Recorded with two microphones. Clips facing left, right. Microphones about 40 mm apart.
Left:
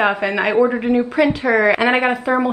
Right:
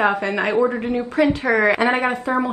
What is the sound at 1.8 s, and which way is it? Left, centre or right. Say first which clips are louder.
Speech: left 3 dB; left.